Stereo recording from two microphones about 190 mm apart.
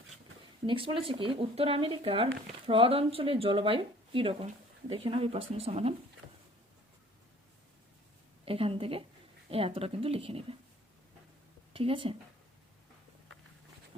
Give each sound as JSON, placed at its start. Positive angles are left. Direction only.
{"t": 0.7, "sound": "speech", "side_deg": -25}
{"t": 8.4, "sound": "speech", "side_deg": -30}
{"t": 11.7, "sound": "speech", "side_deg": -30}